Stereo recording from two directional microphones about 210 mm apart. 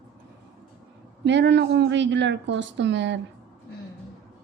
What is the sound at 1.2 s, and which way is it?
A woman's voice, 60° right (ahead or behind).